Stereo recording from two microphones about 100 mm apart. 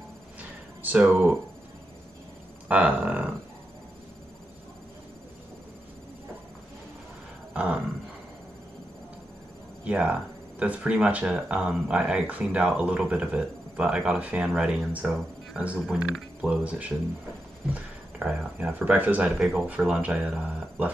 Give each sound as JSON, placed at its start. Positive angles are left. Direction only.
{"t": 0.4, "sound": "a sound", "side_deg": -15}
{"t": 2.7, "sound": "speech", "side_deg": -10}
{"t": 7.5, "sound": "dog", "side_deg": -10}
{"t": 9.8, "sound": "speech", "side_deg": -10}
{"t": 19.3, "sound": "speech", "side_deg": -5}